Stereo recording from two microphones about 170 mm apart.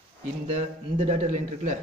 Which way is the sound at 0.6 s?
40° right (ahead or behind).